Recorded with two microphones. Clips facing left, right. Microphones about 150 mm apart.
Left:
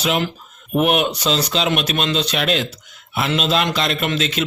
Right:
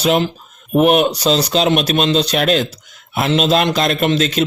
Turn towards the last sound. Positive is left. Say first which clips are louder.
# right 6 dB
turn(degrees=-40)  # may be behind; listen again after turning